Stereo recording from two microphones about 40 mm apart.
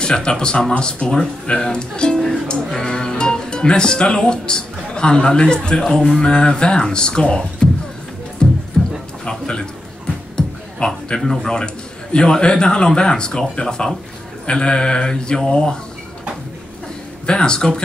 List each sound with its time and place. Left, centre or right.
0.0 s a man's voice: centre
8.4 s music: left
9.2 s a sound: centre
10.8 s a man's voice: left
17.3 s a man's voice: left